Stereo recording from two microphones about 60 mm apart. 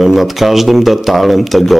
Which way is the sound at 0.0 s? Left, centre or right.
Centre.